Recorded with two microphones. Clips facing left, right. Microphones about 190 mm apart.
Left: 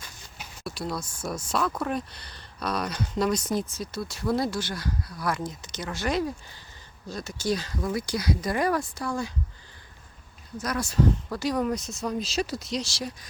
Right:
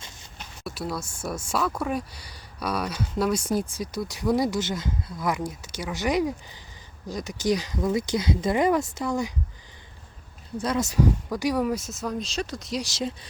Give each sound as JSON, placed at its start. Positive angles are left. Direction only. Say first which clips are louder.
{"t": 0.3, "sound": "speech", "louder": "right 1 dB", "side_deg": 0}
{"t": 10.6, "sound": "speech", "louder": "right 2 dB", "side_deg": -25}
{"t": 12.8, "sound": "speech", "louder": "right 4 dB", "side_deg": -20}